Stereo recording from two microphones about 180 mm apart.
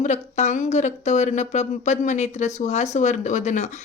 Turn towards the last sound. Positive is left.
turn(degrees=40)  # may be behind; listen again after turning